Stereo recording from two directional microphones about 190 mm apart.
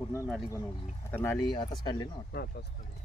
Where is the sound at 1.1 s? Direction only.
10° left (ahead or behind).